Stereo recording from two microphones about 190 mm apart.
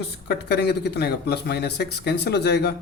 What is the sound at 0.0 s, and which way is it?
Speech, 60° left (ahead or behind).